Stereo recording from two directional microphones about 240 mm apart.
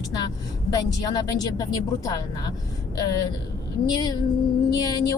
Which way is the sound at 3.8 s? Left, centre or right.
Centre.